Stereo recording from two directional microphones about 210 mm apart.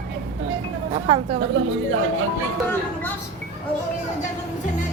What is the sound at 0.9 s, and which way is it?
Speech, 25° right (ahead or behind).